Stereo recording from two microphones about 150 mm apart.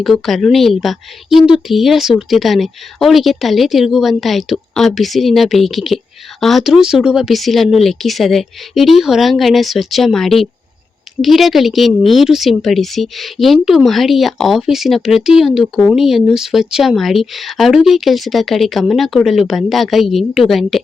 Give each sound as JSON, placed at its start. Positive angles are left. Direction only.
{"t": 0.0, "sound": "a woman's voice", "side_deg": 0}